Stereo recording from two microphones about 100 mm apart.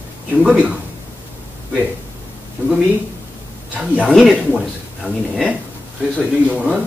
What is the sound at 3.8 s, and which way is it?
Speech, 10° right (ahead or behind).